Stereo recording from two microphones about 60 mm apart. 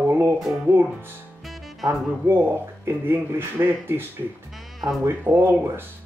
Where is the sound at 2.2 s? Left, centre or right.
Right.